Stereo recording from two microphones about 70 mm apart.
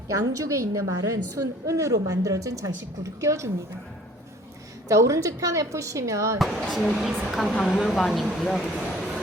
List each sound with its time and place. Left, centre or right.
0.1 s a woman's voice: right
4.9 s a woman's voice: right
6.6 s a woman's voice: centre